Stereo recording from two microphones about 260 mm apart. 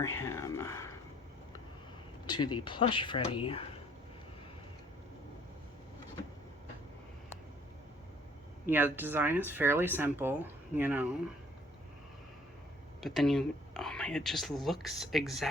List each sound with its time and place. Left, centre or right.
0.0 s speech: centre
2.2 s speech: centre
8.6 s speech: centre
13.0 s speech: centre